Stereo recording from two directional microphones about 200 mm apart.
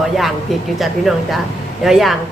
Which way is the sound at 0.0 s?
Centre (ahead or behind).